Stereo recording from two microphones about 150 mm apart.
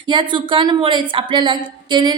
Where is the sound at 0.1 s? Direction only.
35° right (ahead or behind).